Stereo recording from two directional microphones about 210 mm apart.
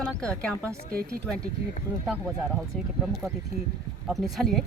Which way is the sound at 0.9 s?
45° right (ahead or behind).